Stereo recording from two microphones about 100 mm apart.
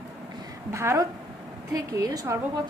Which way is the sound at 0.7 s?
30° right (ahead or behind).